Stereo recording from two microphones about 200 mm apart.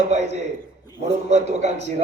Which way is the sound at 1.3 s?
35° right (ahead or behind).